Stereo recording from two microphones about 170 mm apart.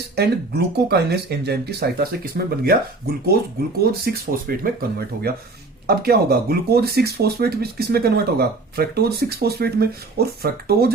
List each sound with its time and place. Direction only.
0.2 s speech: 75° right (ahead or behind)